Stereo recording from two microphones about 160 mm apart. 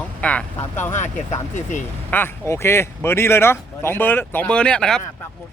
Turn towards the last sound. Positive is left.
turn(degrees=5)  # may be behind; listen again after turning